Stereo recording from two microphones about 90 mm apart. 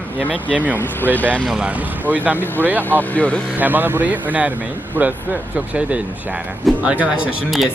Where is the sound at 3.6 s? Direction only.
20° right (ahead or behind).